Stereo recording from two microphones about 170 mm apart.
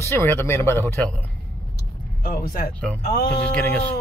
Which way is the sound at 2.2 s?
60° left (ahead or behind).